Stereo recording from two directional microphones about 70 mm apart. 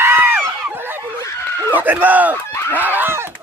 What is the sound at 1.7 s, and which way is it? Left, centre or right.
Speech, right.